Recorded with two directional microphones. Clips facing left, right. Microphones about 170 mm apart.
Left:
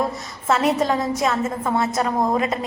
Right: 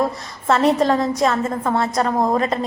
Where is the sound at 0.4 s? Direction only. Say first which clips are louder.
Right 3 dB; 5° left (ahead or behind).